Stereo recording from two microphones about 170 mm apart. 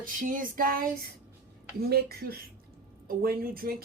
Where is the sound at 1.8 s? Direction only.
65° right (ahead or behind).